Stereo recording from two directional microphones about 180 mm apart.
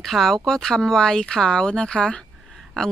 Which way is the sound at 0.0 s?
Centre (ahead or behind).